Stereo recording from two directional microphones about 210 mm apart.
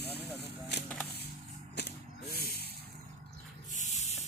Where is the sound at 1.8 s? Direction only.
55° left (ahead or behind).